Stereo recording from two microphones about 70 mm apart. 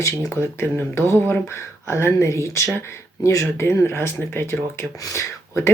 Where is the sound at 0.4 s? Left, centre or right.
Left.